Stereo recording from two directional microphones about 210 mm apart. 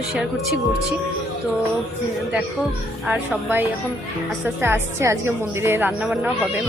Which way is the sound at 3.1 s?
10° right (ahead or behind).